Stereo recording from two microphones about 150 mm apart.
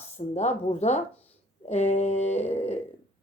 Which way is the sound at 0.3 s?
45° left (ahead or behind).